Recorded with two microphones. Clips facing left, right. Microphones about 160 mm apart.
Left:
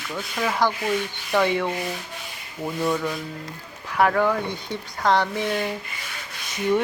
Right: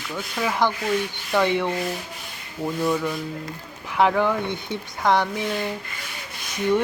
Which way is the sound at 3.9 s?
15° right (ahead or behind).